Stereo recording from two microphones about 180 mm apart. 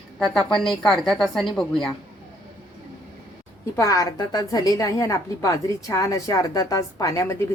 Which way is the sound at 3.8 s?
20° left (ahead or behind).